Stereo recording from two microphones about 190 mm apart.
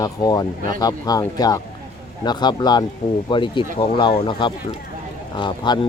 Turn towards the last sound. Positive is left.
turn(degrees=25)  # may be behind; listen again after turning